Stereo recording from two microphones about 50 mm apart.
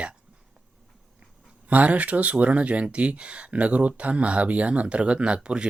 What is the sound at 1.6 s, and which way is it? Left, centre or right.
Speech, right.